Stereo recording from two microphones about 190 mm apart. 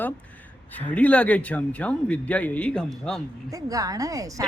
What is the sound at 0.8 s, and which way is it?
Speech, 5° left (ahead or behind).